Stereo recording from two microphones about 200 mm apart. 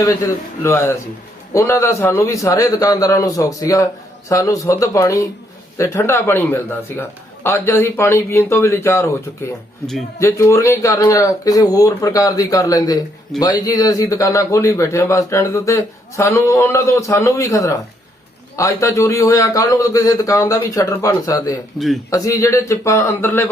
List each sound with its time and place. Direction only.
0.0 s a man's voice: 15° left (ahead or behind)
10.2 s a man's voice: 15° left (ahead or behind)